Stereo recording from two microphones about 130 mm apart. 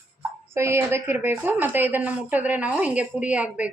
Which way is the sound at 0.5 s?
20° right (ahead or behind).